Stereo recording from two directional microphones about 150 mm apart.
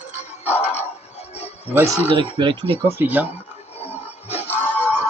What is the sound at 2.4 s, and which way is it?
Speech, 35° right (ahead or behind).